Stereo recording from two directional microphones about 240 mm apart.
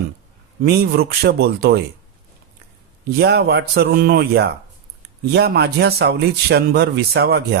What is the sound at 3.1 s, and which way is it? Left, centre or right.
Speech, right.